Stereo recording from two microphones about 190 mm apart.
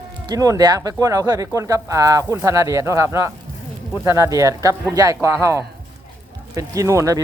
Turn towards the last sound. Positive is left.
turn(degrees=-15)  # may be behind; listen again after turning